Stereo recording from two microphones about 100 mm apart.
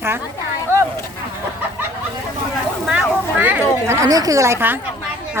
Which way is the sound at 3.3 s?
20° right (ahead or behind).